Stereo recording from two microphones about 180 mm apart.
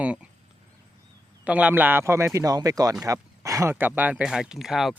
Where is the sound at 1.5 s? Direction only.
10° right (ahead or behind).